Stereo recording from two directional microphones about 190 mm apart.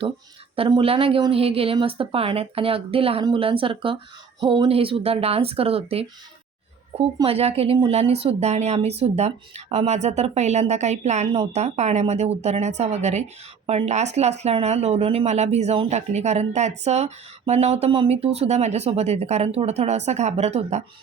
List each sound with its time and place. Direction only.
0.5 s speech: 30° right (ahead or behind)
7.2 s speech: 30° right (ahead or behind)